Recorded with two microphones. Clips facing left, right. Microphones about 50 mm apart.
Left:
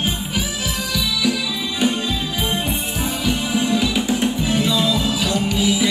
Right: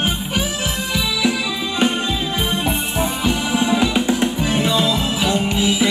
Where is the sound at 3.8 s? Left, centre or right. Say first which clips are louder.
Right 2 dB; right.